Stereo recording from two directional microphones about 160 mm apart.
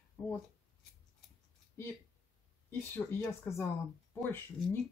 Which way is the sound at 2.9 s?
15° left (ahead or behind).